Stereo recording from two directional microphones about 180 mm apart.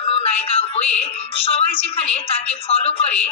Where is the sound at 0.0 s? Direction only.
35° left (ahead or behind).